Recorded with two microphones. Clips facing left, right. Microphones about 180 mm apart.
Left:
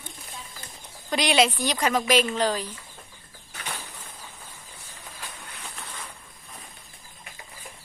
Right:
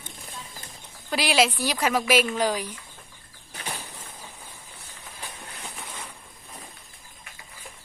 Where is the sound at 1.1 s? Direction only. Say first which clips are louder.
Left 1 dB; 5° right (ahead or behind).